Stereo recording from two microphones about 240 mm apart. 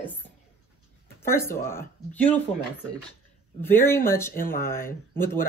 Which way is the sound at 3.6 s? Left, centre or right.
Centre.